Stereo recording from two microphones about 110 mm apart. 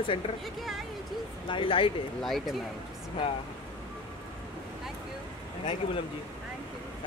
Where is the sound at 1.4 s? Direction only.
50° left (ahead or behind).